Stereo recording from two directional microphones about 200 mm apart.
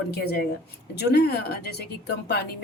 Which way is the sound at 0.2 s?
50° left (ahead or behind).